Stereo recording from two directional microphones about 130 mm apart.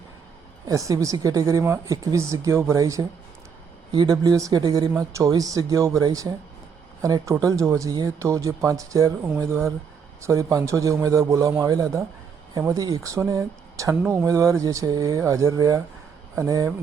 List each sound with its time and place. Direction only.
0.7 s speech: 25° right (ahead or behind)